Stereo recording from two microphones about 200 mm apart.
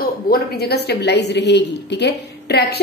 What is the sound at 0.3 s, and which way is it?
A woman's voice, 55° left (ahead or behind).